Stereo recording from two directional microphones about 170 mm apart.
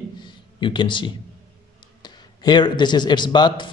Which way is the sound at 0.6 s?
30° left (ahead or behind).